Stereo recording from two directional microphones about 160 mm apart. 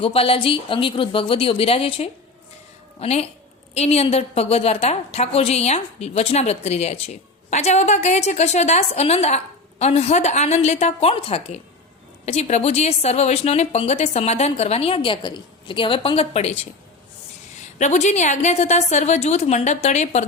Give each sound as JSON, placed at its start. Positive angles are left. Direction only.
{"t": 0.0, "sound": "a woman's voice", "side_deg": 35}
{"t": 17.7, "sound": "a woman's voice", "side_deg": 45}